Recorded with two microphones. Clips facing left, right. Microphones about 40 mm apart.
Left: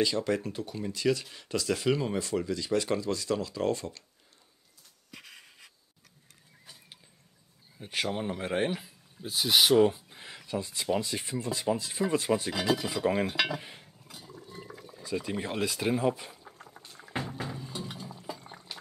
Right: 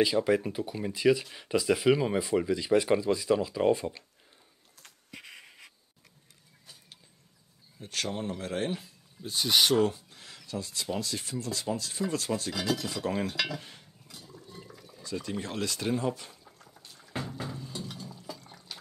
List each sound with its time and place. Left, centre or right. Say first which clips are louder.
0.0 s speech: right 3 dB; centre
5.1 s writing: right 2 dB; centre
6.6 s mechanisms: left 1 dB; centre
7.8 s speech: left 2 dB; centre
9.3 s speech: left 2 dB; centre
9.8 s speech: left 3 dB; centre
14.3 s water: left 3 dB; centre
14.7 s speech: left 3 dB; centre
16.4 s a sound: left 4 dB; left